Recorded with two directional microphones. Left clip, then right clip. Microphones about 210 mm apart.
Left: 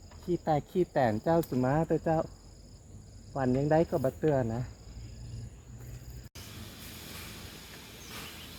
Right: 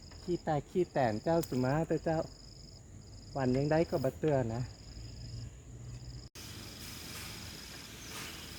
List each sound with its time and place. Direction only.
0.3 s speech: 35° left (ahead or behind)
3.3 s speech: 15° left (ahead or behind)